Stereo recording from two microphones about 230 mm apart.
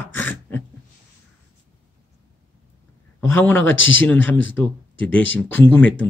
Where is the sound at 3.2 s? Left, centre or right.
Centre.